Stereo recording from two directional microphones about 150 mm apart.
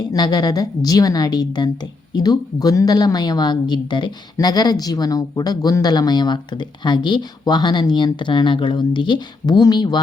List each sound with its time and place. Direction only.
0.1 s a woman's voice: 25° left (ahead or behind)